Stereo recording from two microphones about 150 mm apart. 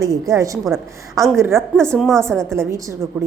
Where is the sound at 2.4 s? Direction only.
15° right (ahead or behind).